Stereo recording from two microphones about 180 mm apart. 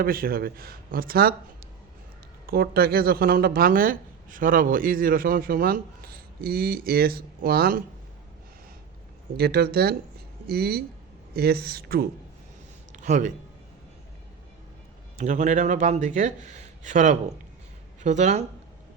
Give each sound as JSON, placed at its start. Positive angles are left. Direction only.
{"t": 0.0, "sound": "speech", "side_deg": -55}
{"t": 2.5, "sound": "speech", "side_deg": -60}
{"t": 9.4, "sound": "speech", "side_deg": -60}
{"t": 13.0, "sound": "speech", "side_deg": -45}
{"t": 15.2, "sound": "speech", "side_deg": -40}